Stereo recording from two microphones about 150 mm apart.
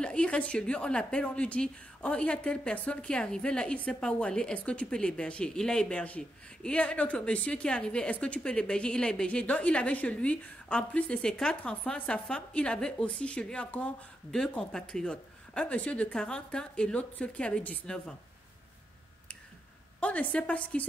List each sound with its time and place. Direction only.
0.0 s a woman's voice: 5° left (ahead or behind)
20.0 s a woman's voice: 10° left (ahead or behind)